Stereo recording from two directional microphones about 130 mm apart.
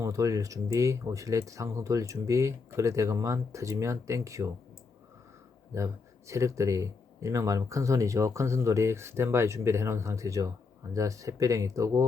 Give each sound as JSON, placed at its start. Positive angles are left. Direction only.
{"t": 0.0, "sound": "speech", "side_deg": -25}
{"t": 5.7, "sound": "speech", "side_deg": -25}